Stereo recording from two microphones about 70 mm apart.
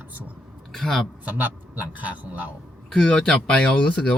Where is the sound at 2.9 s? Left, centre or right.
Centre.